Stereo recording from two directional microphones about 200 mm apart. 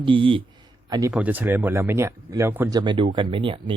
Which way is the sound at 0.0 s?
25° right (ahead or behind).